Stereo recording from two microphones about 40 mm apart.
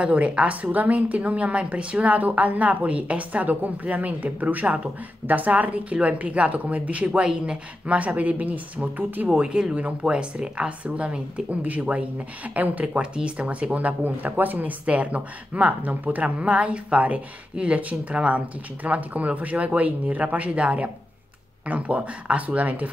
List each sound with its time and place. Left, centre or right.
0.0 s a woman's voice: right
9.3 s a woman's voice: right